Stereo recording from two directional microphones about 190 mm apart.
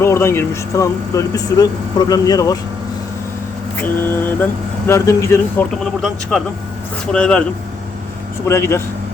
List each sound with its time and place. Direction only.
0.0 s speech: 15° left (ahead or behind)
3.8 s speech: 10° left (ahead or behind)
8.4 s speech: 15° left (ahead or behind)